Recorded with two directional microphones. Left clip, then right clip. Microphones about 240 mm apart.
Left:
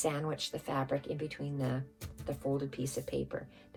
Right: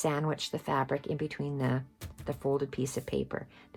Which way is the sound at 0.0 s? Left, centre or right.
Right.